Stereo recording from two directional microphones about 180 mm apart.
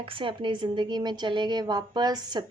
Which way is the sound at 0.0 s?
30° right (ahead or behind).